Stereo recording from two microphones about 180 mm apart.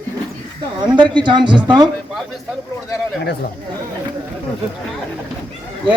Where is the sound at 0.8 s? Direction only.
25° right (ahead or behind).